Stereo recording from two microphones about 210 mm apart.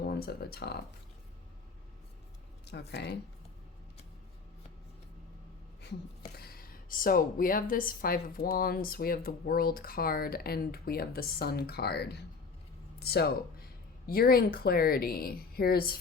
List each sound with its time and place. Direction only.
0.0 s speech: 45° left (ahead or behind)
2.6 s a woman's voice: 50° left (ahead or behind)
6.3 s a woman's voice: 45° left (ahead or behind)